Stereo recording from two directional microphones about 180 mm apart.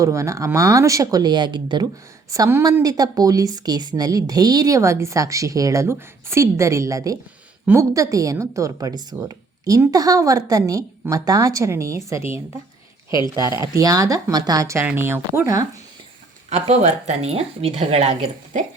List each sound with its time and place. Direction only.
0.0 s a woman's voice: 15° right (ahead or behind)
2.3 s a woman's voice: 15° right (ahead or behind)
13.1 s speech: 25° left (ahead or behind)
13.7 s a woman's voice: 20° right (ahead or behind)
16.6 s speech: 35° right (ahead or behind)